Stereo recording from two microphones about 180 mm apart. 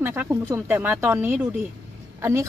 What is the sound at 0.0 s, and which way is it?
Speech, 15° right (ahead or behind).